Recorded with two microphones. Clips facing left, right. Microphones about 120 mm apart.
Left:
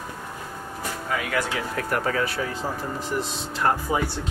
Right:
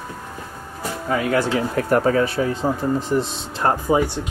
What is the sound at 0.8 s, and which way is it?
Speech, 30° right (ahead or behind).